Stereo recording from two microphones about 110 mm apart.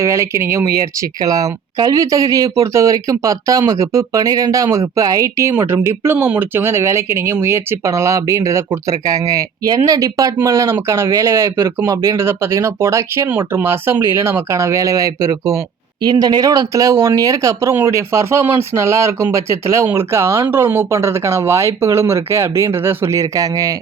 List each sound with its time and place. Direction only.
0.0 s speech: 25° right (ahead or behind)